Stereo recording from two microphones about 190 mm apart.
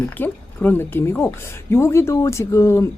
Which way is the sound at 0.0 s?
10° left (ahead or behind).